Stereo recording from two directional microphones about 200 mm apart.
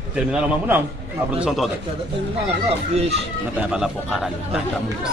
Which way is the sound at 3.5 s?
5° right (ahead or behind).